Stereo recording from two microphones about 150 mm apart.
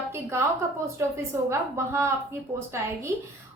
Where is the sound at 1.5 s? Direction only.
15° right (ahead or behind).